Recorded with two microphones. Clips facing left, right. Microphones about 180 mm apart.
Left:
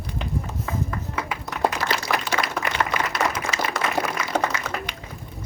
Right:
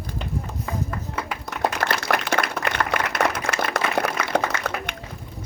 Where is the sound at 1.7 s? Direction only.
60° right (ahead or behind).